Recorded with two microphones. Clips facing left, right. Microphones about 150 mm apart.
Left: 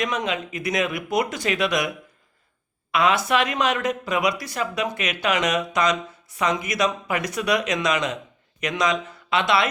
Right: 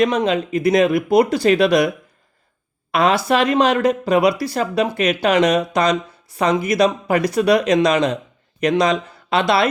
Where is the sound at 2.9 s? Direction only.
35° right (ahead or behind).